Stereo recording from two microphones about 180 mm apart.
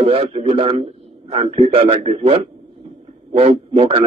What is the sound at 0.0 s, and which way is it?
A man's voice, 30° right (ahead or behind).